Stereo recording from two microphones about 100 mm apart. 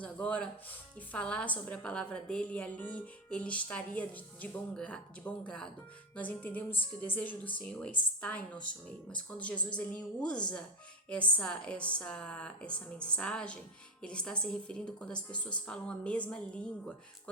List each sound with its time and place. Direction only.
0.0 s music: 10° left (ahead or behind)
1.1 s a woman's voice: 10° left (ahead or behind)